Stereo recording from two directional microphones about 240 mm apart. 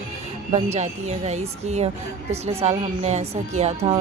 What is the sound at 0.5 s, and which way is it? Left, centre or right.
A woman's voice, right.